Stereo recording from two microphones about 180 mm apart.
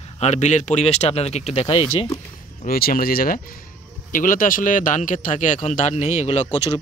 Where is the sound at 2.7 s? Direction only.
55° left (ahead or behind); by 6.5 s 40° left (ahead or behind).